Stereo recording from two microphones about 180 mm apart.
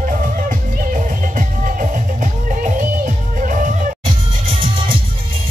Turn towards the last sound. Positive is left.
turn(degrees=-30)  # may be behind; listen again after turning